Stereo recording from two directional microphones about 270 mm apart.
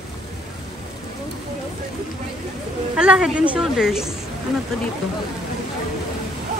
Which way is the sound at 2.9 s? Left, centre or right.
Centre.